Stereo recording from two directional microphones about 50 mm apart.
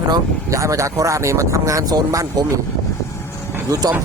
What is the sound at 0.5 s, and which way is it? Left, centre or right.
Speech, right.